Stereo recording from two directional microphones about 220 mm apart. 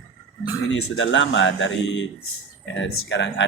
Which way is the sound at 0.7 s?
60° left (ahead or behind).